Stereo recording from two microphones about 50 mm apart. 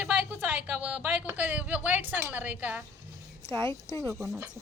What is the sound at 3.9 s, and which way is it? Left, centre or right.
Speech, right.